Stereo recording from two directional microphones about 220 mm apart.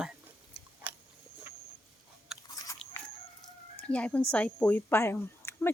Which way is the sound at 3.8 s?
5° left (ahead or behind).